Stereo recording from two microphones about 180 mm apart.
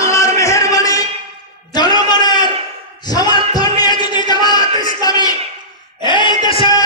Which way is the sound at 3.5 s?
20° left (ahead or behind).